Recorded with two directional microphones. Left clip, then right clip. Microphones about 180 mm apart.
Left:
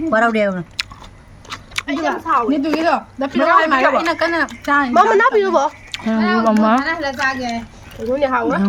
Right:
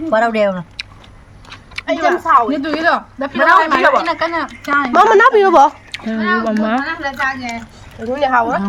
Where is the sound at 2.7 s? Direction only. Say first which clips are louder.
Right 2 dB; 25° left (ahead or behind).